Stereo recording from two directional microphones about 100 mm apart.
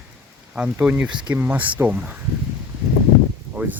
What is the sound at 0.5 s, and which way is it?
Speech, 10° right (ahead or behind).